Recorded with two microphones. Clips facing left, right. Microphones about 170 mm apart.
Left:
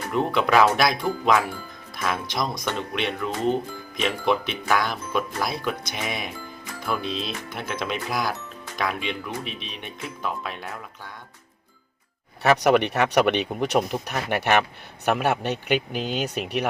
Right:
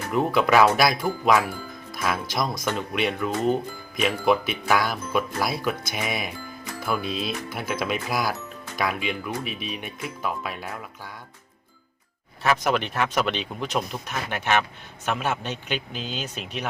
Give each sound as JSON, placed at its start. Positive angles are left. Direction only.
{"t": 0.1, "sound": "speech", "side_deg": -5}
{"t": 12.4, "sound": "speech", "side_deg": 70}